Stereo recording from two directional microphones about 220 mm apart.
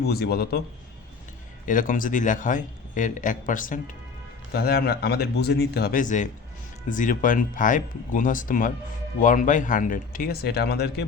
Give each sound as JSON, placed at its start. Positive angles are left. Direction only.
{"t": 0.0, "sound": "speech", "side_deg": 45}
{"t": 1.6, "sound": "a man's voice", "side_deg": 35}